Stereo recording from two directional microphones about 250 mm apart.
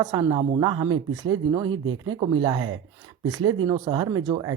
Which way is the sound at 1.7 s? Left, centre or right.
Right.